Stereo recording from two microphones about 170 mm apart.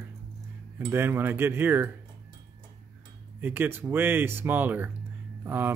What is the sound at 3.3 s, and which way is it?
Speech, 10° right (ahead or behind).